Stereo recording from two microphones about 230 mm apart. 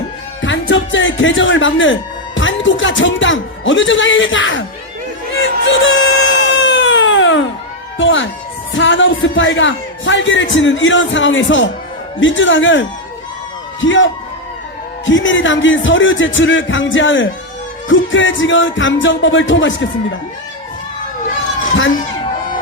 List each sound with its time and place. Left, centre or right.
0.4 s speech: left
5.4 s baby cry: left
7.9 s speech: left
13.8 s a man's voice: left